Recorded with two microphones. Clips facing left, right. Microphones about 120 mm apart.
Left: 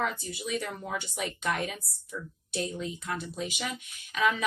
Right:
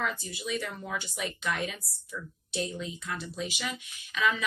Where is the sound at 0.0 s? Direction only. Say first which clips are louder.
Left 2 dB; 50° left (ahead or behind).